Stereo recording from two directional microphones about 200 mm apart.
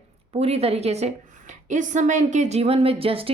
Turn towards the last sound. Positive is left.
turn(degrees=-30)  # may be behind; listen again after turning